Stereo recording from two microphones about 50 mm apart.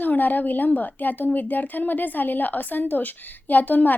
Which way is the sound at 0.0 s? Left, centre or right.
Left.